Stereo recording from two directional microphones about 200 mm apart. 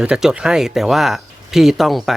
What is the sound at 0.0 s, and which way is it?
Speech, 5° right (ahead or behind).